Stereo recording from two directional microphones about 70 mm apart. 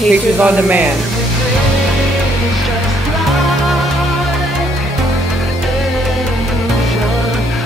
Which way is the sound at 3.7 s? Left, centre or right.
Centre.